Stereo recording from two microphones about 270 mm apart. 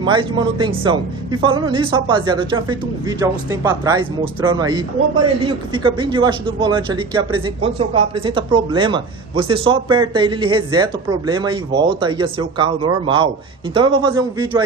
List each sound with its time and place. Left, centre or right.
0.0 s speech: centre